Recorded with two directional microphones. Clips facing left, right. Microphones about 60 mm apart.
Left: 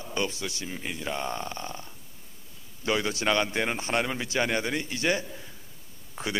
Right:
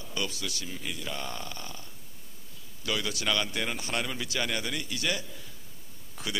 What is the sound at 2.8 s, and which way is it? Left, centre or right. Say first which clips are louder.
A man's voice: left 5 dB; left.